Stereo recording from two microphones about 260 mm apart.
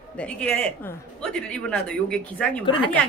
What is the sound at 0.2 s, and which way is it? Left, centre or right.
A man's voice, centre.